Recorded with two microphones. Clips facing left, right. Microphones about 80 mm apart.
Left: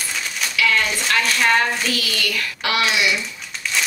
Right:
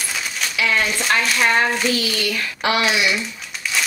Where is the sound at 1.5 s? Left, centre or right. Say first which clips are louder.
Right 1 dB; right.